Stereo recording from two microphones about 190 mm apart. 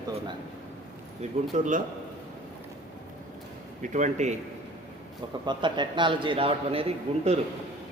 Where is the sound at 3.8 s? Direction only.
40° right (ahead or behind).